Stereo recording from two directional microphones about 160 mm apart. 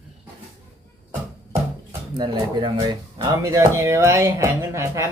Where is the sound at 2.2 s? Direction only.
25° right (ahead or behind).